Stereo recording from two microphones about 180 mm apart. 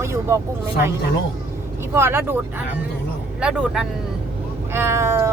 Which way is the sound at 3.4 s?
5° right (ahead or behind).